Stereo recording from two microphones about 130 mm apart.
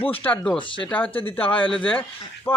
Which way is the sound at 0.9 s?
15° left (ahead or behind).